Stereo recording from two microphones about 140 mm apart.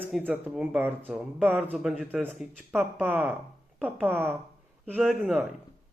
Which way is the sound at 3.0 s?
10° right (ahead or behind).